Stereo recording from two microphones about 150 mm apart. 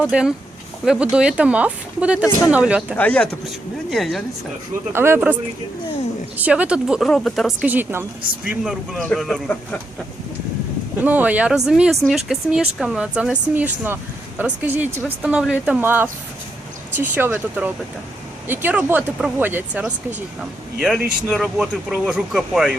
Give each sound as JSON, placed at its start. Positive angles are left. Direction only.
{"t": 0.0, "sound": "speech", "side_deg": -5}
{"t": 3.0, "sound": "speech", "side_deg": 10}
{"t": 4.9, "sound": "speech", "side_deg": -15}
{"t": 7.7, "sound": "speech", "side_deg": -15}
{"t": 8.4, "sound": "speech", "side_deg": -5}
{"t": 11.0, "sound": "speech", "side_deg": -10}